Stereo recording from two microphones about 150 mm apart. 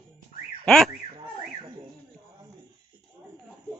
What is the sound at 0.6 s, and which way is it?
Speech, 5° left (ahead or behind).